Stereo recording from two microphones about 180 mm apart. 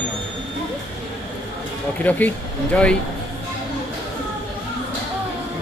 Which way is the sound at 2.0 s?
10° left (ahead or behind).